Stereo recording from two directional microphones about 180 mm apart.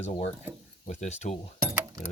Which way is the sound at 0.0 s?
40° left (ahead or behind).